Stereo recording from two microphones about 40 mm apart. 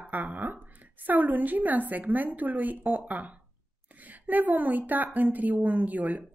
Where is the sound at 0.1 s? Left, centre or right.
Right.